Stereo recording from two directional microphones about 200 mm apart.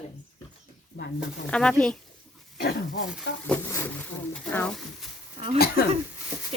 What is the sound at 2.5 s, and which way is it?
Speech, 60° left (ahead or behind).